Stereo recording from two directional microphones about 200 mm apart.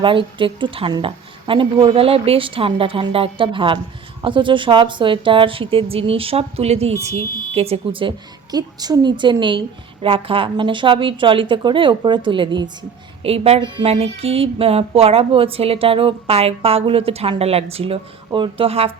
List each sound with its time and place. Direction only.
0.0 s a woman's voice: 25° right (ahead or behind)